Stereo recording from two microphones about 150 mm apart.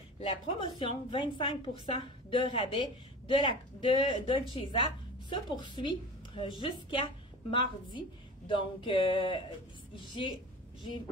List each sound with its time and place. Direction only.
0.2 s a woman's voice: 35° left (ahead or behind)